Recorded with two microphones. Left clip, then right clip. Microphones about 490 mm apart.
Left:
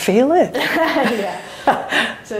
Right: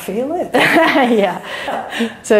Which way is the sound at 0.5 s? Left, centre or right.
Right.